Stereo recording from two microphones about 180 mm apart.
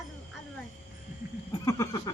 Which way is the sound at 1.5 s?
20° left (ahead or behind).